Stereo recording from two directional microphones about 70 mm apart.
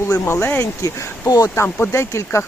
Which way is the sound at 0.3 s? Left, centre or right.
Left.